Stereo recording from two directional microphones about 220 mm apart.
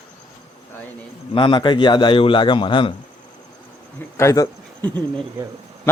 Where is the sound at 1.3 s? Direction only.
20° left (ahead or behind).